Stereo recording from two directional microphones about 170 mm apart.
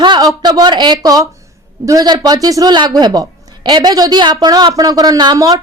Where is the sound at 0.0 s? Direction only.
25° right (ahead or behind).